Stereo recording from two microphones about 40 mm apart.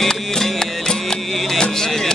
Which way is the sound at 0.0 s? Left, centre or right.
Centre.